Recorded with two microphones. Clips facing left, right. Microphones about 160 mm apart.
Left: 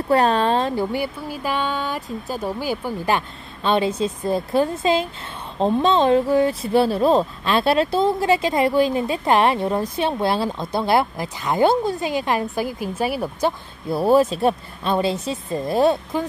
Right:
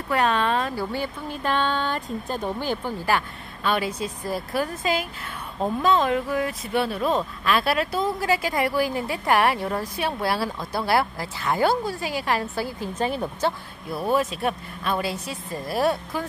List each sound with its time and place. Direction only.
0.1 s speech: 35° left (ahead or behind)
0.9 s speech: 10° left (ahead or behind)
3.1 s speech: 25° left (ahead or behind)
13.8 s speech: 30° left (ahead or behind)